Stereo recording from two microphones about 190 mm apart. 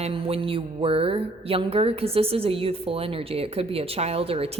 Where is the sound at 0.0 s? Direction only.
30° right (ahead or behind).